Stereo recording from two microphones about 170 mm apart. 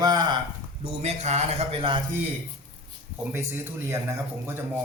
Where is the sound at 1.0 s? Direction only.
40° right (ahead or behind).